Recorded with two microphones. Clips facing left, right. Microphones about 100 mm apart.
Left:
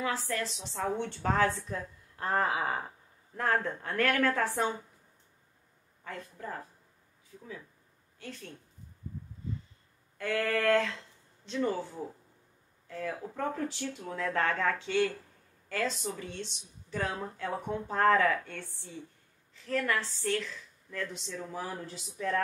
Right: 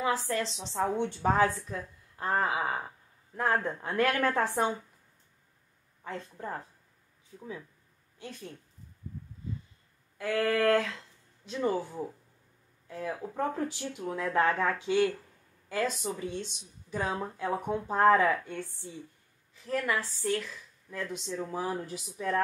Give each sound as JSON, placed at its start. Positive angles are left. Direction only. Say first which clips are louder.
{"t": 0.0, "sound": "speech", "louder": "right 3 dB", "side_deg": -20}
{"t": 3.3, "sound": "a woman's voice", "louder": "right 1 dB", "side_deg": -15}
{"t": 6.0, "sound": "a woman's voice", "louder": "right 3 dB", "side_deg": -25}
{"t": 8.2, "sound": "a woman's voice", "louder": "right 1 dB", "side_deg": -15}
{"t": 10.1, "sound": "speech", "louder": "right 2 dB", "side_deg": -10}